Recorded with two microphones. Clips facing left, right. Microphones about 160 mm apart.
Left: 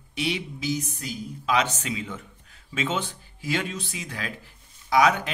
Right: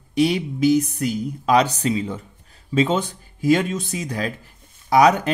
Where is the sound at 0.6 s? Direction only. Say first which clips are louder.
Right 12 dB; 55° right (ahead or behind).